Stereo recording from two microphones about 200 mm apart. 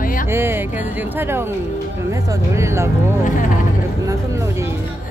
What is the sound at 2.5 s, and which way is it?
Speech, 15° right (ahead or behind).